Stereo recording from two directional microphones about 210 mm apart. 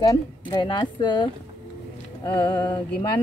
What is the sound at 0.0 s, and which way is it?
Speech, 20° left (ahead or behind).